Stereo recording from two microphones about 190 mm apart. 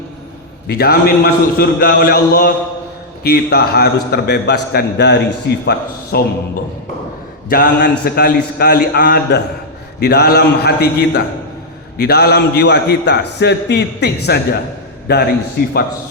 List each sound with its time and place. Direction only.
0.7 s a man's voice: 55° left (ahead or behind)
7.5 s a man's voice: 55° left (ahead or behind)